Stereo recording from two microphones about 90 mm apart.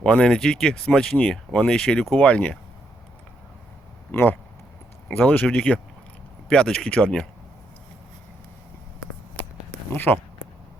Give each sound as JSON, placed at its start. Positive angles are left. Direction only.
{"t": 0.0, "sound": "speech", "side_deg": 10}
{"t": 4.1, "sound": "speech", "side_deg": 20}
{"t": 9.9, "sound": "speech", "side_deg": 20}